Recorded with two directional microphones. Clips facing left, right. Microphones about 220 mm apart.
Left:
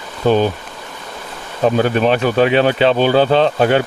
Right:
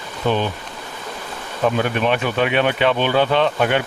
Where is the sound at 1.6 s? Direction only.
35° left (ahead or behind).